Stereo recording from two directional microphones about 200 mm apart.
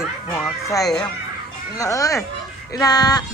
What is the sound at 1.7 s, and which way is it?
A child's voice, 15° left (ahead or behind).